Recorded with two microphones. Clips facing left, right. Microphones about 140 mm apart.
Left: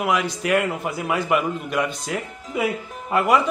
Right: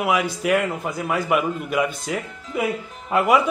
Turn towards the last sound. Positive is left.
turn(degrees=0)  # may be behind; listen again after turning